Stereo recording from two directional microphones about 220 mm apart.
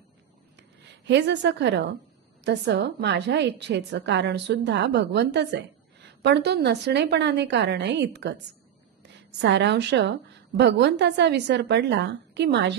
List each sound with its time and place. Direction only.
0.6 s a woman's voice: 55° right (ahead or behind)